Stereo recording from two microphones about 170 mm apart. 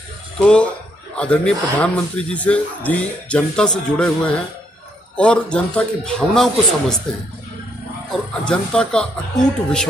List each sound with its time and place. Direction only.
0.4 s a man's voice: 5° left (ahead or behind)
8.3 s speech: 5° left (ahead or behind)